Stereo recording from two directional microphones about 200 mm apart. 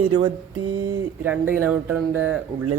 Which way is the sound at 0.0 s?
25° right (ahead or behind).